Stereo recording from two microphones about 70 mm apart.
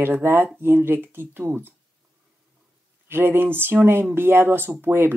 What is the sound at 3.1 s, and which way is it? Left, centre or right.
Speech, right.